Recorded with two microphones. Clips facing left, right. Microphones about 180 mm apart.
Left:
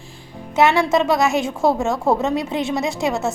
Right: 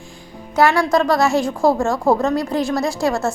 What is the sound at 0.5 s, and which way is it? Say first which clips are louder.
Speech: even; 25° left (ahead or behind).